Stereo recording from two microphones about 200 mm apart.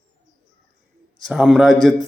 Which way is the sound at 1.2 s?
5° right (ahead or behind).